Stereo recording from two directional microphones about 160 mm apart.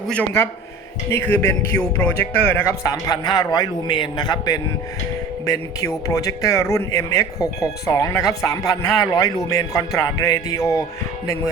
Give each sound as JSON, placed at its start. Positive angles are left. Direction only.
{"t": 0.1, "sound": "a man's voice", "side_deg": 10}
{"t": 6.1, "sound": "speech", "side_deg": 20}